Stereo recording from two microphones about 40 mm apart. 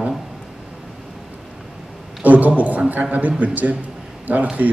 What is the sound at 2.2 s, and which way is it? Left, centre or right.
A man's voice, right.